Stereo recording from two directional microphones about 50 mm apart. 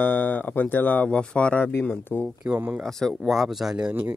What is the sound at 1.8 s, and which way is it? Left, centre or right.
Speech, left.